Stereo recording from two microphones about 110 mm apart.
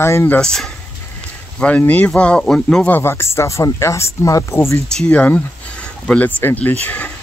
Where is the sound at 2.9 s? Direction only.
25° left (ahead or behind).